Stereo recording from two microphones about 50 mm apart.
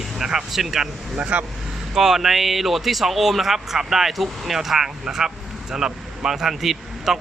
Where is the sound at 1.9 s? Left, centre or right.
Centre.